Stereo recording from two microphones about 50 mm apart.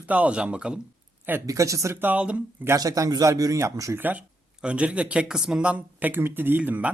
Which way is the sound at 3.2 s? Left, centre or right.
Right.